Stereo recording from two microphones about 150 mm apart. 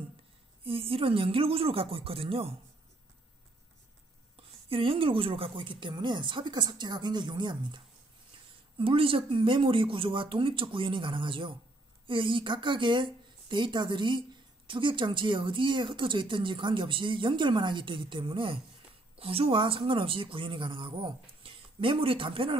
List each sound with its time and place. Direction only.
0.7 s speech: 40° right (ahead or behind)
4.4 s speech: 40° right (ahead or behind)